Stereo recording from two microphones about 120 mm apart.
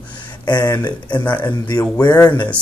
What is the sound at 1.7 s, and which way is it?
Speech, 20° left (ahead or behind).